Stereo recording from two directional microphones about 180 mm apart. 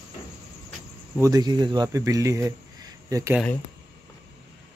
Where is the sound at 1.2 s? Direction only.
20° right (ahead or behind).